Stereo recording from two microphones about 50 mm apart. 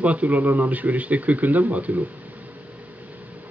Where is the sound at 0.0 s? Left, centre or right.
Right.